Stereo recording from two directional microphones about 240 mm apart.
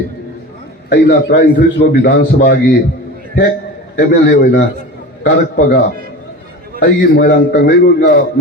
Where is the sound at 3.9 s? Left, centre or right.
Left.